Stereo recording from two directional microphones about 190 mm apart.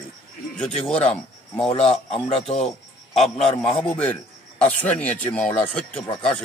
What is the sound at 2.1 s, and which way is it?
A man's voice, centre (ahead or behind).